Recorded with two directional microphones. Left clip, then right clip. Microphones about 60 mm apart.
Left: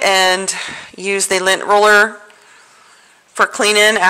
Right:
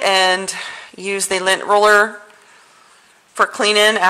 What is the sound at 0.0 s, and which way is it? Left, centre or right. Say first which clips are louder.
A woman's voice: left 2 dB; left.